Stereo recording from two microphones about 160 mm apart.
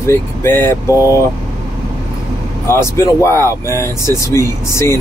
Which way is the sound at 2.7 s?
15° left (ahead or behind).